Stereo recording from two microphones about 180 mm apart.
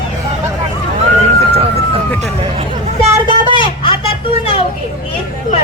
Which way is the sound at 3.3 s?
25° left (ahead or behind).